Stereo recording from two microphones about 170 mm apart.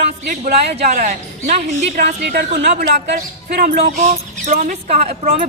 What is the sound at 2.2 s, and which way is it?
Speech, 75° right (ahead or behind).